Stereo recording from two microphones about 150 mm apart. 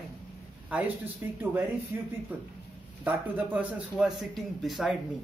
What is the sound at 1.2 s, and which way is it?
Speech, 15° right (ahead or behind).